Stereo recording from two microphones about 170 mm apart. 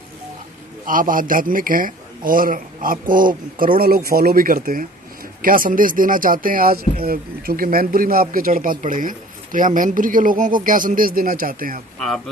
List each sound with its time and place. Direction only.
0.8 s speech: 55° right (ahead or behind)